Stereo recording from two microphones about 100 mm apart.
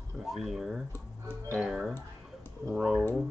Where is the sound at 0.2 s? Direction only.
Centre (ahead or behind).